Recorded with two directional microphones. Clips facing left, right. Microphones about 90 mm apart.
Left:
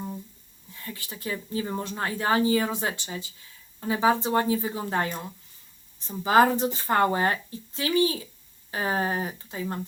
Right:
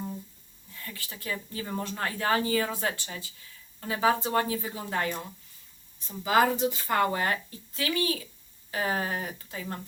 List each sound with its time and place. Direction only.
0.7 s a woman's voice: 20° left (ahead or behind)